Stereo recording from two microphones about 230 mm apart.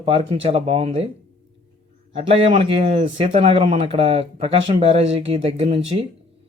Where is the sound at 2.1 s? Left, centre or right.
Right.